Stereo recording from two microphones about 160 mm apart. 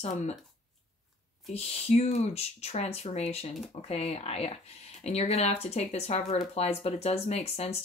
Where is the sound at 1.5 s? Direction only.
40° left (ahead or behind).